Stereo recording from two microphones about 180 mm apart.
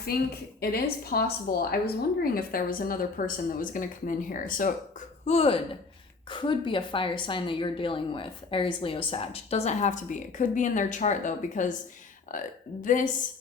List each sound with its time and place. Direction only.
0.1 s a woman's voice: 60° left (ahead or behind)